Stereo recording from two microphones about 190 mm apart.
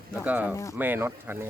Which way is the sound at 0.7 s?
10° right (ahead or behind).